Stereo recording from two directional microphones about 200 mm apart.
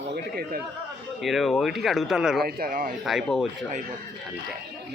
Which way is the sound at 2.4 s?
45° right (ahead or behind).